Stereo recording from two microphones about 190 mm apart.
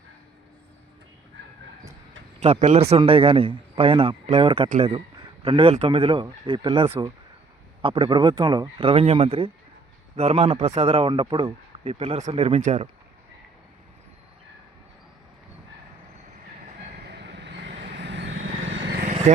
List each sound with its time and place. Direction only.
2.4 s a man's voice: 35° right (ahead or behind)
17.1 s vehicle: 60° right (ahead or behind)
19.0 s vehicle: 35° right (ahead or behind)